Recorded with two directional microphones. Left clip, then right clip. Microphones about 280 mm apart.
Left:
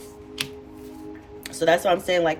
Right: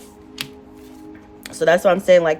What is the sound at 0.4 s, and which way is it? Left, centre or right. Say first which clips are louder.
Music: even; centre.